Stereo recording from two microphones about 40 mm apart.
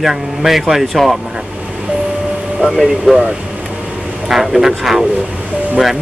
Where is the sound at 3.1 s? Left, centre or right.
Right.